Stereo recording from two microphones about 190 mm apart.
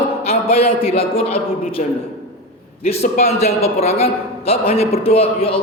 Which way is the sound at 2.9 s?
35° left (ahead or behind).